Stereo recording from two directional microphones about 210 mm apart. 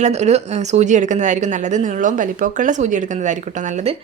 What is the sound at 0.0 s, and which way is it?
A woman's voice, 30° right (ahead or behind).